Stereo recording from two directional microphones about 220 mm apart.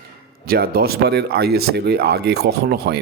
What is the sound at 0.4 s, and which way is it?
A man's voice, 40° right (ahead or behind).